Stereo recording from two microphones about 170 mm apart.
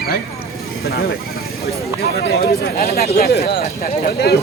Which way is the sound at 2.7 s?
60° left (ahead or behind).